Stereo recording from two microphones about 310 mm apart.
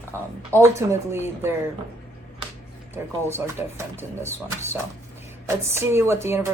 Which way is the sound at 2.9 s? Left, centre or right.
Centre.